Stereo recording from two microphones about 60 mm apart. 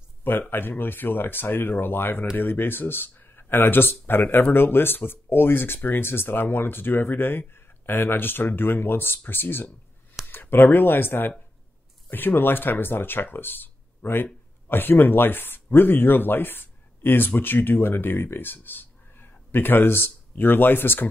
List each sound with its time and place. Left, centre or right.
0.5 s speech: left